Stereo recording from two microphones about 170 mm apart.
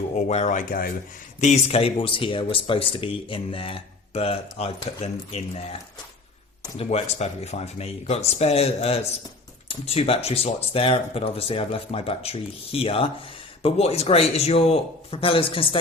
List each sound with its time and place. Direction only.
0.2 s speech: 40° left (ahead or behind)
1.4 s speech: 40° left (ahead or behind)
6.7 s speech: 40° left (ahead or behind)